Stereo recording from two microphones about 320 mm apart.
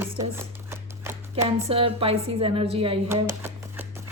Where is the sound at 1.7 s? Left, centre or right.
Centre.